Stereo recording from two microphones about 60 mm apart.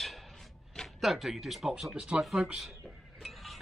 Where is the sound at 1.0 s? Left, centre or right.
Centre.